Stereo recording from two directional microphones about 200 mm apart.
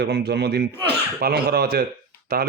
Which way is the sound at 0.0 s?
55° right (ahead or behind).